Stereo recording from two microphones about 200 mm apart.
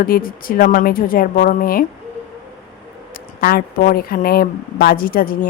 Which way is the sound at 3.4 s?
45° left (ahead or behind).